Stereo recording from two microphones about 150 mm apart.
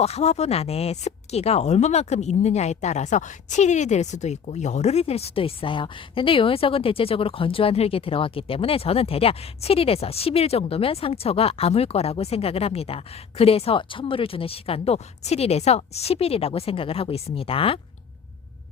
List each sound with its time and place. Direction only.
0.0 s speech: 45° left (ahead or behind)